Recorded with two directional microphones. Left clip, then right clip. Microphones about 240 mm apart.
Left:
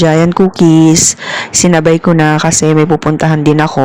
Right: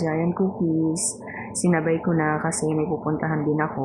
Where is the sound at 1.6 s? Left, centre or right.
Left.